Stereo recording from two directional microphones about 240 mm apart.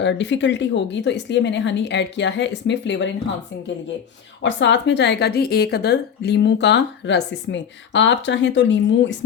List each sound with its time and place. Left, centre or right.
0.0 s a woman's voice: left
4.4 s a woman's voice: left